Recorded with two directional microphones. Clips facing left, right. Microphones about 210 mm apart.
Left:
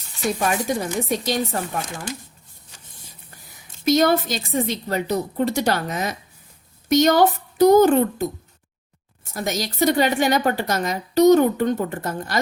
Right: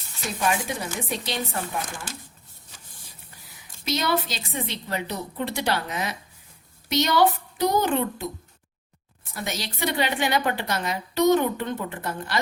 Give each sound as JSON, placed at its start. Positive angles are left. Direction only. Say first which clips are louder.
{"t": 0.6, "sound": "a woman's voice", "louder": "left 7 dB", "side_deg": 45}
{"t": 3.8, "sound": "a woman's voice", "louder": "left 8 dB", "side_deg": 45}
{"t": 9.3, "sound": "a woman's voice", "louder": "left 6 dB", "side_deg": 45}